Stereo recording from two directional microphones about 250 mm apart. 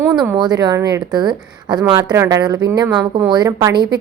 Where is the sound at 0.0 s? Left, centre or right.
Centre.